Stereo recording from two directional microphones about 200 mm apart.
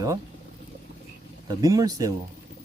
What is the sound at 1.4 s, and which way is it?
Speech, 20° right (ahead or behind).